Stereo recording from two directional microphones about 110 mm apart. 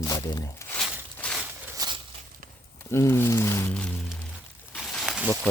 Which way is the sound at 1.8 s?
35° right (ahead or behind).